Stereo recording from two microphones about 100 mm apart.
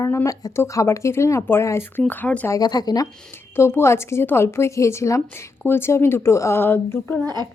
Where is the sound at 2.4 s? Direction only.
40° left (ahead or behind).